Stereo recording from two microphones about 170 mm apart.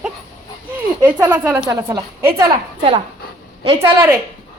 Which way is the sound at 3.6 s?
30° right (ahead or behind).